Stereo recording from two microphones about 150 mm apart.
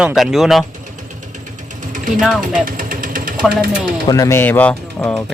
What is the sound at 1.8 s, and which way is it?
Mechanisms, 60° right (ahead or behind).